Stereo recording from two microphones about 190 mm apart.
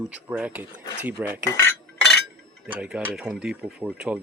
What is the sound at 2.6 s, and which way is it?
Speech, 5° right (ahead or behind).